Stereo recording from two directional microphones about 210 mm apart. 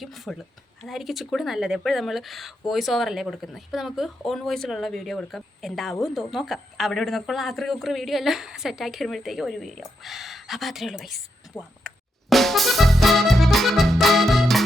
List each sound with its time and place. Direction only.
0.0 s speech: centre (ahead or behind)
11.8 s music: centre (ahead or behind)